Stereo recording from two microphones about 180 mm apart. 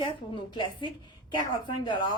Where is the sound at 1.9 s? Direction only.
25° left (ahead or behind).